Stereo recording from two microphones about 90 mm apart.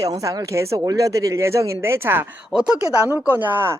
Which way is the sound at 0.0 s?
40° right (ahead or behind).